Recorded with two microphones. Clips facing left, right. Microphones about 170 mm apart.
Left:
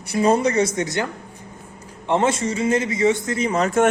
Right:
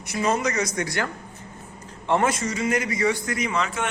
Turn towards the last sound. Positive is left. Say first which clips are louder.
# left 8 dB
turn(degrees=45)  # may be behind; listen again after turning